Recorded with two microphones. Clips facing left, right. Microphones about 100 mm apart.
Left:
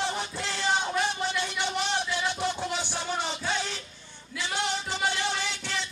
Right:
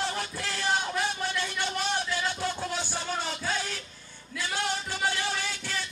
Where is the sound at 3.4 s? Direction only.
5° right (ahead or behind).